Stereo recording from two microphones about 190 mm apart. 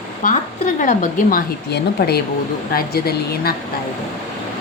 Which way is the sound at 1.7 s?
55° left (ahead or behind).